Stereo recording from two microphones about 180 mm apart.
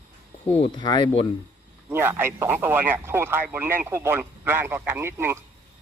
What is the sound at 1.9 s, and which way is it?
Speech, 10° right (ahead or behind).